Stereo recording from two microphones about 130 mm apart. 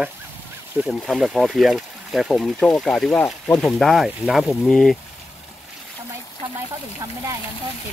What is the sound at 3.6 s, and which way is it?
Speech, centre (ahead or behind).